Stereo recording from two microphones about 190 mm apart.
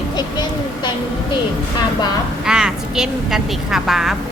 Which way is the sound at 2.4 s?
5° right (ahead or behind).